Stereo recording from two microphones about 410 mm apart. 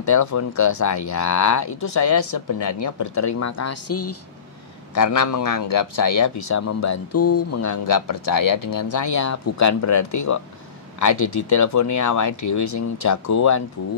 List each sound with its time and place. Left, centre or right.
0.0 s speech: left
4.9 s speech: left